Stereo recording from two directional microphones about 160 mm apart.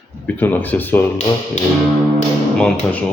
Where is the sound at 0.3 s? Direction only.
10° left (ahead or behind).